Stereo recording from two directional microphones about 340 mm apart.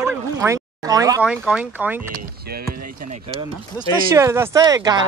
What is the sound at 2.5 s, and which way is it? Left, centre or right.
Speech, right.